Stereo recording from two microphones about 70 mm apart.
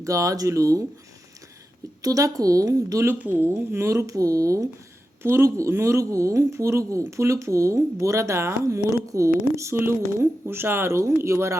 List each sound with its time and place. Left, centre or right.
0.0 s speech: right
2.0 s a woman's voice: right
3.2 s speech: right
3.8 s speech: right
5.2 s speech: right